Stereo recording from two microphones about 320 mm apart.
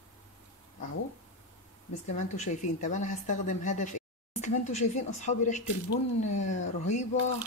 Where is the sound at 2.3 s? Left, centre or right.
Left.